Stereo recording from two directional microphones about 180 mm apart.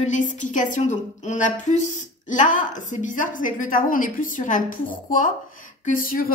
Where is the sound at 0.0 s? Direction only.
45° left (ahead or behind).